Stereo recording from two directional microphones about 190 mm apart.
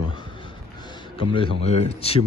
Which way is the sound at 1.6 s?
35° left (ahead or behind).